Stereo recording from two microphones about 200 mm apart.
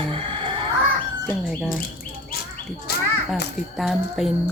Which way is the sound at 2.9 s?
55° left (ahead or behind).